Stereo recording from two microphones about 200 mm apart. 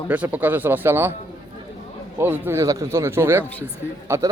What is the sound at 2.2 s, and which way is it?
A man's voice, 10° right (ahead or behind).